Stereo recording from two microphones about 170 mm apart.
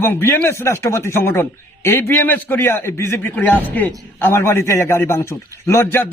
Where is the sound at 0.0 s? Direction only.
15° left (ahead or behind).